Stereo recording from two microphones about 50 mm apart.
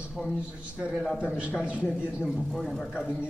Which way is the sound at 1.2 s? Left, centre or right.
Right.